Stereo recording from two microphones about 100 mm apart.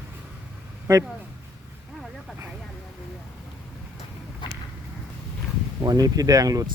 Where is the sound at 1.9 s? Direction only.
Centre (ahead or behind).